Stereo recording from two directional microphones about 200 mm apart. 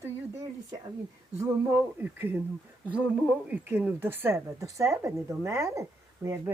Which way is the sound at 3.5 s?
10° right (ahead or behind).